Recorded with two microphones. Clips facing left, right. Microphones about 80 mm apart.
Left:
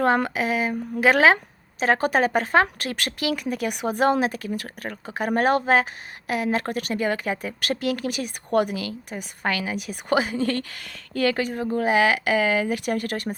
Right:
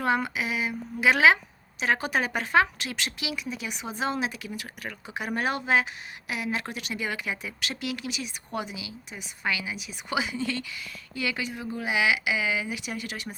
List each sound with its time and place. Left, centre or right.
0.0 s speech: left
11.2 s speech: left